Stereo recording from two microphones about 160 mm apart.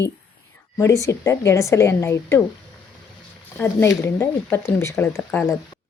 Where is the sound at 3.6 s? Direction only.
15° left (ahead or behind).